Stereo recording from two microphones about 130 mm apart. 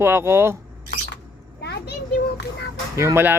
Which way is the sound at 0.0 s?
20° right (ahead or behind).